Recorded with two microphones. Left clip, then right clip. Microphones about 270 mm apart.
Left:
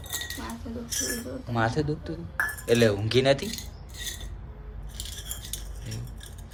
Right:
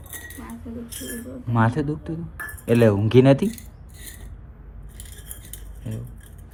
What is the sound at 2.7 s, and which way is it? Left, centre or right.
Speech, centre.